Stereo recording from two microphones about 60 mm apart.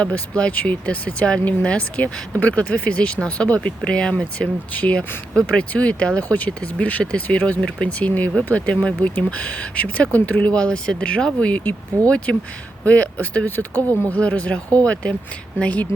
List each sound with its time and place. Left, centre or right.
0.0 s speech: centre
4.4 s speech: left
13.4 s speech: left